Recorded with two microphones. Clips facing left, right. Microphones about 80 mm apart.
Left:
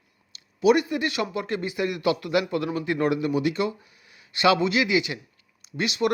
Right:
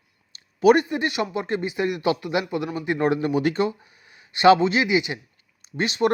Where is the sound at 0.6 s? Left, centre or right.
Right.